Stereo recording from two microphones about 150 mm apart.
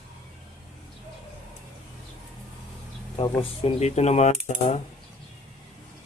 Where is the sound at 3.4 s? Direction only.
45° left (ahead or behind).